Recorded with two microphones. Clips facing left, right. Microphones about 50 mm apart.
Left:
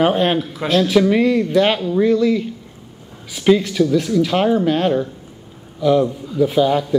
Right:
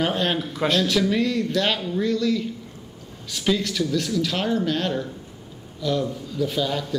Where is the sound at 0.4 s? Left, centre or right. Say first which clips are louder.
Left 5 dB; centre.